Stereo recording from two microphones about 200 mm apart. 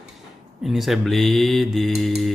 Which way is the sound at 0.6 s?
Centre (ahead or behind).